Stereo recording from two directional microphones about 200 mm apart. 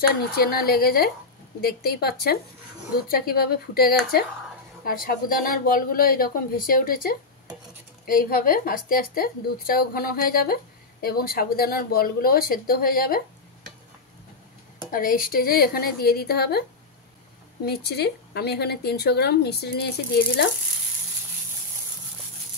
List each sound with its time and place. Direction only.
0.4 s a woman's voice: 50° left (ahead or behind)
14.9 s a woman's voice: 45° left (ahead or behind)
17.6 s a woman's voice: 55° left (ahead or behind)